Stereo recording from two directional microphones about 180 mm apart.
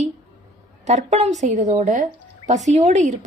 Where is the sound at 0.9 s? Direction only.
40° right (ahead or behind).